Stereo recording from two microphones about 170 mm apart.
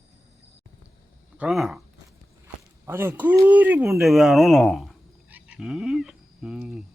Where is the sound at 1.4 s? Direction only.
Centre (ahead or behind).